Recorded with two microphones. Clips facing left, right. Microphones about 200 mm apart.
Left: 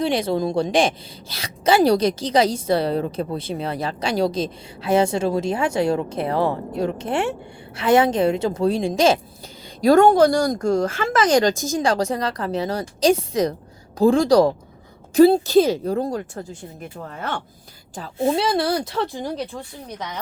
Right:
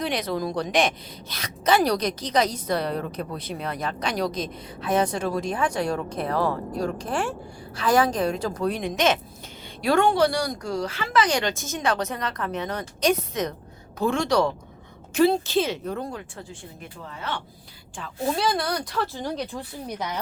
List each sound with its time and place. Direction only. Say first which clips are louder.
0.0 s a woman's voice: left 6 dB; 30° left (ahead or behind); by 17.4 s 50° left (ahead or behind)
18.2 s a woman's voice: left 5 dB; 25° left (ahead or behind)